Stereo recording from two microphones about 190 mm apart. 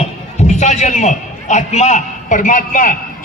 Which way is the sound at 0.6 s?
35° left (ahead or behind).